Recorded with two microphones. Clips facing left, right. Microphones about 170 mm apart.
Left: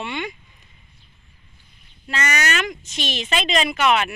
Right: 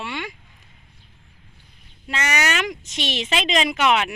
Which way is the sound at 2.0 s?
15° right (ahead or behind).